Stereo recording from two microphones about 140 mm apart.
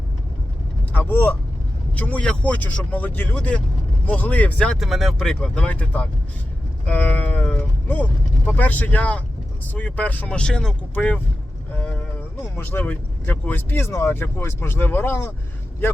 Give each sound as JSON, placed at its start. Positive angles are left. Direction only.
{"t": 0.9, "sound": "speech", "side_deg": 15}
{"t": 11.7, "sound": "vehicle", "side_deg": 10}
{"t": 12.4, "sound": "speech", "side_deg": 15}